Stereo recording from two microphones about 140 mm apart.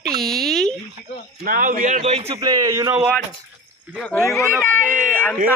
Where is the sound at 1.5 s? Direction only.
75° right (ahead or behind); by 2.4 s 45° right (ahead or behind).